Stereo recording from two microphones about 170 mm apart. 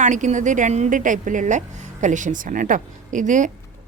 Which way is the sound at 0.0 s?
45° right (ahead or behind).